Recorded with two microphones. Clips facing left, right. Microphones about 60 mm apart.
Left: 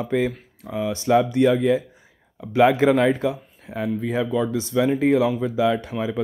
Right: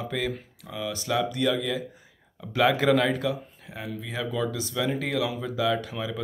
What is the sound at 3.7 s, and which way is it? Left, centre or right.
Speech, left.